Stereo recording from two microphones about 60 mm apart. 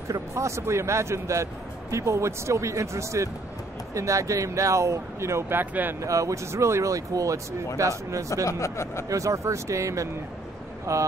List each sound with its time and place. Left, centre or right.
0.3 s speech: right
5.5 s speech: right
5.9 s speech: right
8.5 s speech: left
9.1 s speech: right